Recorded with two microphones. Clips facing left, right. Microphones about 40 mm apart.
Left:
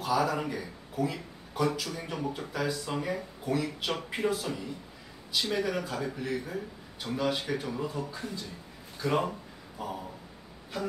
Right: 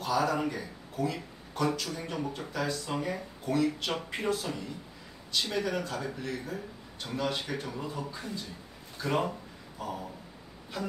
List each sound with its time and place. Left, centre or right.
0.0 s speech: centre
9.8 s speech: centre